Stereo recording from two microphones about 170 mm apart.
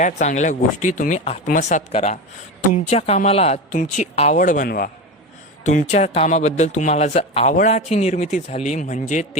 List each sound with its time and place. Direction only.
0.0 s speech: 45° left (ahead or behind)
4.4 s speech: 50° left (ahead or behind)
5.6 s speech: 45° left (ahead or behind)